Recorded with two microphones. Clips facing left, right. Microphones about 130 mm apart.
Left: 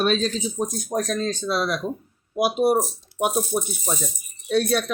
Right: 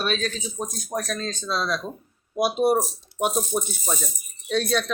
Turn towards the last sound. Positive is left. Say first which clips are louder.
# left 2 dB
turn(degrees=10)  # may be behind; listen again after turning